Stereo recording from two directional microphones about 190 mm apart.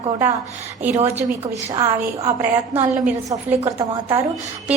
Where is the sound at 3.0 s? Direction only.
10° right (ahead or behind).